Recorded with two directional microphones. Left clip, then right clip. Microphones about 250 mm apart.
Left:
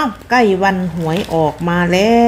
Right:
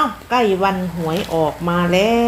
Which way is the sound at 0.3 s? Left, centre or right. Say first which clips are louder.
Left 4 dB; left.